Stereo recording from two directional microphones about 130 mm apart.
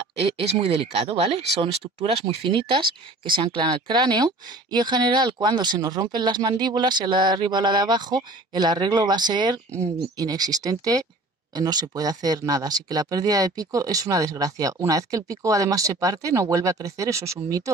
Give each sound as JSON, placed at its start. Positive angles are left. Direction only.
{"t": 0.4, "sound": "speech", "side_deg": -50}
{"t": 2.2, "sound": "speech", "side_deg": -40}